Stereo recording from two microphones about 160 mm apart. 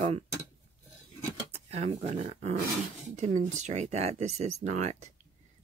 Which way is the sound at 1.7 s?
40° right (ahead or behind).